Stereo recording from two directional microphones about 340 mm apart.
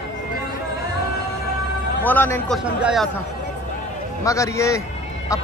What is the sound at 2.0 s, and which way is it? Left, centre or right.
A man's voice, centre.